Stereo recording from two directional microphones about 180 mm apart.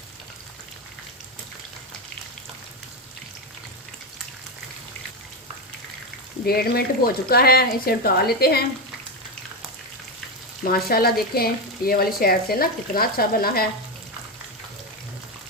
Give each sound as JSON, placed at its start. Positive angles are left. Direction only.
{"t": 6.4, "sound": "speech", "side_deg": 60}
{"t": 10.6, "sound": "speech", "side_deg": 55}